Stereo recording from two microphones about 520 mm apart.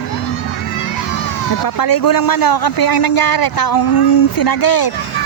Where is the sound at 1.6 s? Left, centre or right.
Left.